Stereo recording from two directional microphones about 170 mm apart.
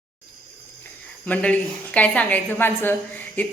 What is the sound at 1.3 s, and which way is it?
A woman's voice, 5° left (ahead or behind).